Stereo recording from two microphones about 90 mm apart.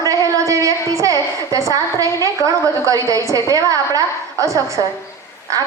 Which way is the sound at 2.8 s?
35° right (ahead or behind).